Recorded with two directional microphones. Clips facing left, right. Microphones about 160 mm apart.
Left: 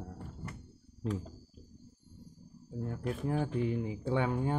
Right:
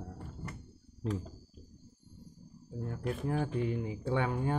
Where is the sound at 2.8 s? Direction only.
25° left (ahead or behind).